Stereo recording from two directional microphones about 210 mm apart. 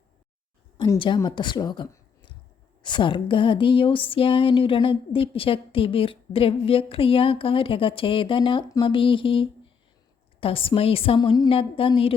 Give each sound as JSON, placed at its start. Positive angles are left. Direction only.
{"t": 0.8, "sound": "speech", "side_deg": 20}